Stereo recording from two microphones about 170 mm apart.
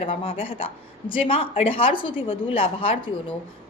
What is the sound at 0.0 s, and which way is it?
A woman's voice, 35° left (ahead or behind).